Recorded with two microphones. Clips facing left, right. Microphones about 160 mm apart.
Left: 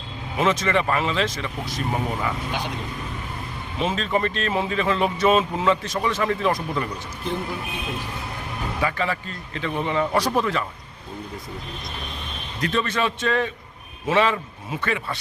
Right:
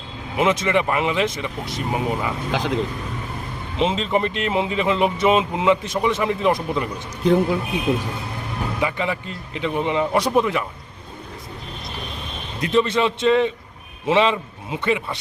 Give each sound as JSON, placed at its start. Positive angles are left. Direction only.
{"t": 0.3, "sound": "speech", "side_deg": -15}
{"t": 2.5, "sound": "speech", "side_deg": -90}
{"t": 3.8, "sound": "speech", "side_deg": -20}
{"t": 8.8, "sound": "speech", "side_deg": -20}
{"t": 12.5, "sound": "speech", "side_deg": -20}